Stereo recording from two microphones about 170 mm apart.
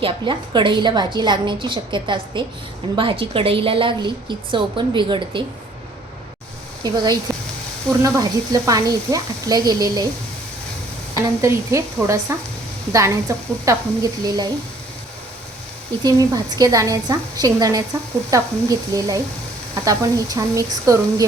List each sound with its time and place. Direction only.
0.0 s a woman's voice: 30° right (ahead or behind)
6.8 s a woman's voice: 25° right (ahead or behind)
11.1 s a woman's voice: 20° right (ahead or behind)
16.0 s a woman's voice: 20° right (ahead or behind)